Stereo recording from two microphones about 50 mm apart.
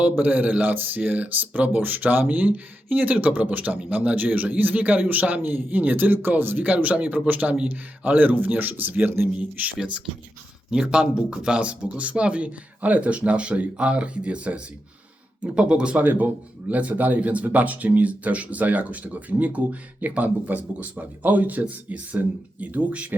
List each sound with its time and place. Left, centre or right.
0.0 s speech: right
10.7 s a man's voice: centre